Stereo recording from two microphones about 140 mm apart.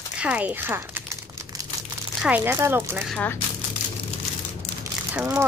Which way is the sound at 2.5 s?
20° right (ahead or behind).